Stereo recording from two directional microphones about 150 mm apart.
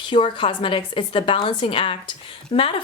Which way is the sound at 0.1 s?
35° left (ahead or behind).